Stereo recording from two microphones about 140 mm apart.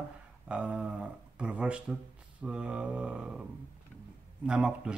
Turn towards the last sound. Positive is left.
turn(degrees=-5)  # may be behind; listen again after turning